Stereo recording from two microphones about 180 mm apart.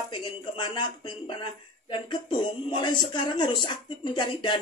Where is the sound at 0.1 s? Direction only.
25° left (ahead or behind).